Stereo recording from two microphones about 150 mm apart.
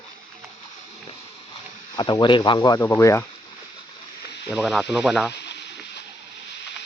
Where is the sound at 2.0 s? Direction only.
30° left (ahead or behind).